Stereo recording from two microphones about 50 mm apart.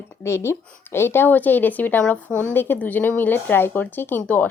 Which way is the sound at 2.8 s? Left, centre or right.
Left.